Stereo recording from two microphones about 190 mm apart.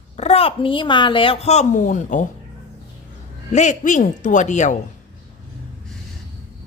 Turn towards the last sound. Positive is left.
turn(degrees=40)  # may be behind; listen again after turning